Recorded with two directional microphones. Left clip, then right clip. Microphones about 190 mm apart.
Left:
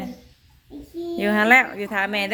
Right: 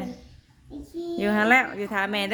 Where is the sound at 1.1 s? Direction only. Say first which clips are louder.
Left 4 dB; 10° right (ahead or behind).